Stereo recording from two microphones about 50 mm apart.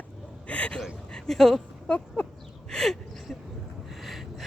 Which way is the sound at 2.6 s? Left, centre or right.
Centre.